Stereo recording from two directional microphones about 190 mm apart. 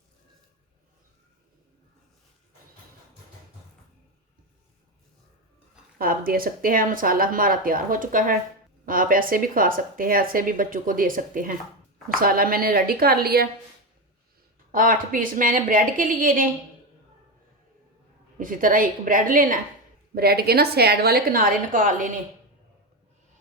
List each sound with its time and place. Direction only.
6.0 s speech: 50° right (ahead or behind)
14.7 s speech: 45° right (ahead or behind)
18.3 s a woman's voice: 45° right (ahead or behind)